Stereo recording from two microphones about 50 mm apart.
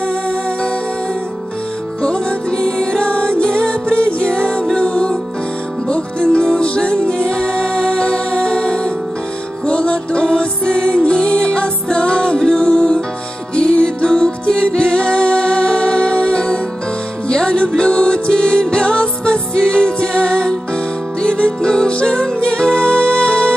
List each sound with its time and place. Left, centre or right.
2.0 s music: centre